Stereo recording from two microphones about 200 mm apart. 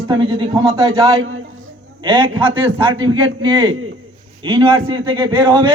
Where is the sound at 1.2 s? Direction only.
90° right.